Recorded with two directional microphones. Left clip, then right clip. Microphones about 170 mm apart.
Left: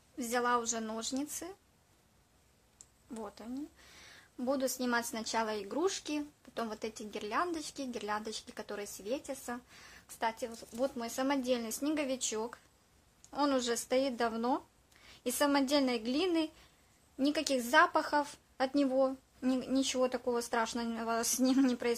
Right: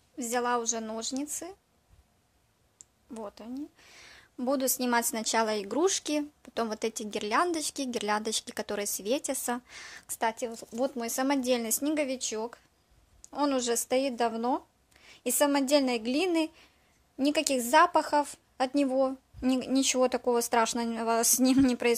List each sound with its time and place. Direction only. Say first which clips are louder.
0.2 s a woman's voice: right 3 dB; 25° right (ahead or behind)
2.8 s a woman's voice: right 4 dB; 20° right (ahead or behind)